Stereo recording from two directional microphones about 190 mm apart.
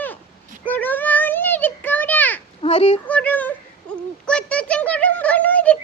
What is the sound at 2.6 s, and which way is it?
Speech, 30° left (ahead or behind).